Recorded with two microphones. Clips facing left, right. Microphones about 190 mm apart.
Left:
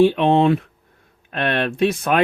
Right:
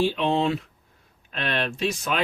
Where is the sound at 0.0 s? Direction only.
55° left (ahead or behind).